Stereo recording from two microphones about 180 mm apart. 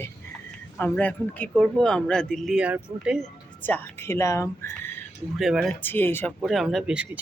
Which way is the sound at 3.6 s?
10° left (ahead or behind).